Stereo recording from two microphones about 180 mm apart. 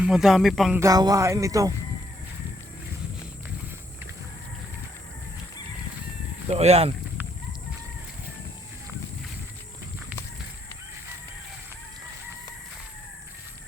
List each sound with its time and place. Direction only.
0.0 s speech: 5° right (ahead or behind)
0.8 s speech: 20° right (ahead or behind)
6.5 s speech: 35° right (ahead or behind)